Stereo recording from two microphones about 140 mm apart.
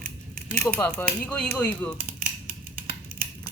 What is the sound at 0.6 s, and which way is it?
Speech, 10° left (ahead or behind).